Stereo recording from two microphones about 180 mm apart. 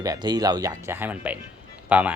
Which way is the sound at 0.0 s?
20° right (ahead or behind).